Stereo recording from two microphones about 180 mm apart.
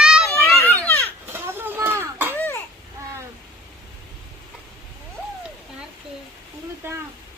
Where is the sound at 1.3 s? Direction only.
10° right (ahead or behind).